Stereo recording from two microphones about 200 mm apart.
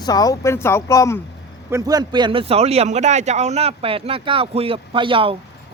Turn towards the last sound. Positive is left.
turn(degrees=-25)  # may be behind; listen again after turning